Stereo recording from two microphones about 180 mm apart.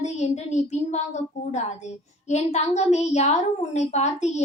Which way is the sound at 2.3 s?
40° left (ahead or behind).